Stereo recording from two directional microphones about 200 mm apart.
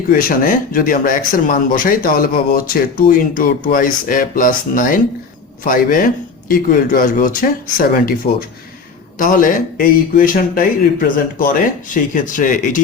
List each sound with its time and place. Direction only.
0.1 s speech: 45° left (ahead or behind)